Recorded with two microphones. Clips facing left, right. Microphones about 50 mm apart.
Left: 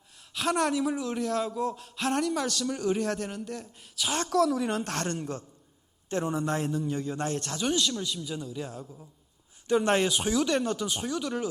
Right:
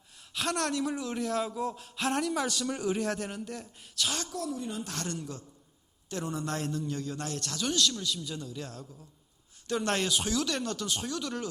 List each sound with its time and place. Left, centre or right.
0.2 s a sound: centre
0.5 s a man's voice: centre
4.3 s a woman's voice: left
4.8 s a woman's voice: left
6.1 s a man's voice: left; by 11.4 s centre